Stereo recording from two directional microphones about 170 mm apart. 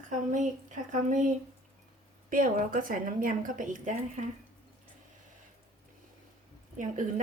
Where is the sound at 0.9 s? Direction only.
45° right (ahead or behind).